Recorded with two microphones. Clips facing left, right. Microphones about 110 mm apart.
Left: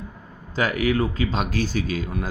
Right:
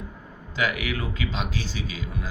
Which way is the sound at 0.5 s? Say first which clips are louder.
Left 6 dB; 40° left (ahead or behind).